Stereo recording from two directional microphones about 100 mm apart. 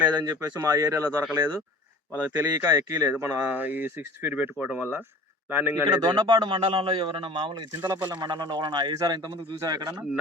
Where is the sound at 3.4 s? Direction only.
15° right (ahead or behind).